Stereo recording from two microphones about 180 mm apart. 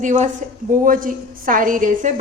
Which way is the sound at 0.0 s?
45° right (ahead or behind).